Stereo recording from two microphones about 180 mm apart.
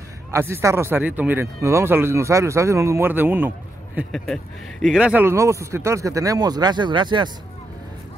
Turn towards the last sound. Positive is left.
turn(degrees=-25)  # may be behind; listen again after turning